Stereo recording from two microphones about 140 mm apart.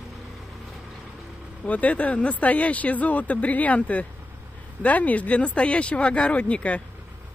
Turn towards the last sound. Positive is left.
turn(degrees=10)  # may be behind; listen again after turning